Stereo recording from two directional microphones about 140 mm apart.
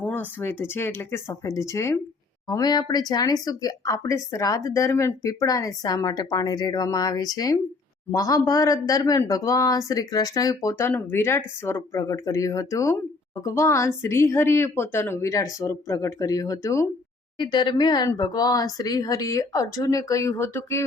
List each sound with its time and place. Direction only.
0.0 s speech: 10° left (ahead or behind)
17.3 s speech: 35° left (ahead or behind); by 20.8 s 20° left (ahead or behind)